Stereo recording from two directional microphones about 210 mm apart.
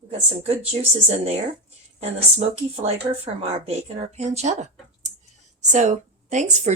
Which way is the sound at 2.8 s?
30° right (ahead or behind).